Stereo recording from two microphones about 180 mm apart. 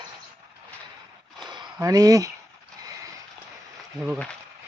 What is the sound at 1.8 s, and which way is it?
Speech, 20° right (ahead or behind).